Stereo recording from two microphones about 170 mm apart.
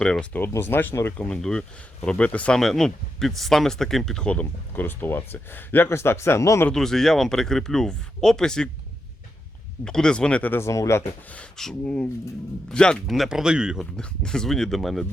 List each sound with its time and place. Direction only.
0.0 s speech: 5° left (ahead or behind)
6.7 s speech: centre (ahead or behind)
9.8 s speech: 5° left (ahead or behind)